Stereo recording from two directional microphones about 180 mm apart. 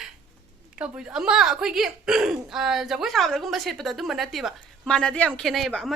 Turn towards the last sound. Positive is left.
turn(degrees=0)  # may be behind; listen again after turning